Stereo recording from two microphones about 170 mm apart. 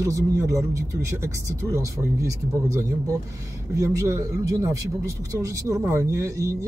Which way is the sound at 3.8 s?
20° right (ahead or behind).